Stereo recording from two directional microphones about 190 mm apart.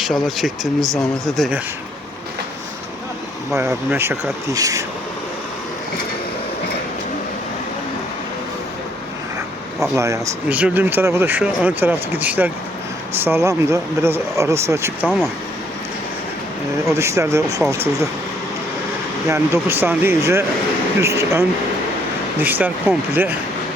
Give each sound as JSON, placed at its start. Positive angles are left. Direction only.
{"t": 0.0, "sound": "speech", "side_deg": 0}
{"t": 3.6, "sound": "speech", "side_deg": -15}
{"t": 9.9, "sound": "speech", "side_deg": -15}
{"t": 16.8, "sound": "speech", "side_deg": -15}
{"t": 19.3, "sound": "speech", "side_deg": -10}